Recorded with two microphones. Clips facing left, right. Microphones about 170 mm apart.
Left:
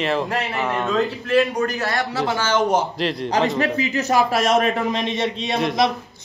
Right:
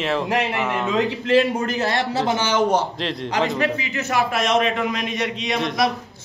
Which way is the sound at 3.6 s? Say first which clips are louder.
Left 2 dB; 40° left (ahead or behind).